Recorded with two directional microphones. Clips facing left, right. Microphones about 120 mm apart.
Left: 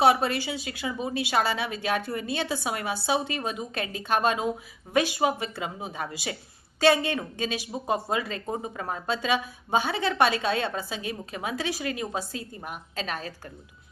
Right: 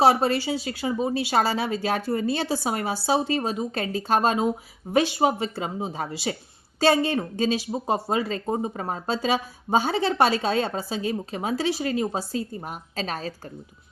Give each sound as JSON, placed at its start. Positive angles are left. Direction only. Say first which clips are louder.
{"t": 0.0, "sound": "a woman's voice", "louder": "right 2 dB", "side_deg": -35}